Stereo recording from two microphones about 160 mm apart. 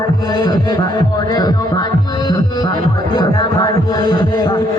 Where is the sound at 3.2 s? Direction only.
25° left (ahead or behind).